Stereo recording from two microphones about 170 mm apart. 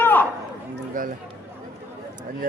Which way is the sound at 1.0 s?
50° right (ahead or behind).